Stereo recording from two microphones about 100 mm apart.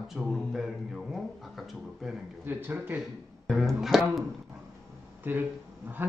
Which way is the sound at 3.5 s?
Centre (ahead or behind).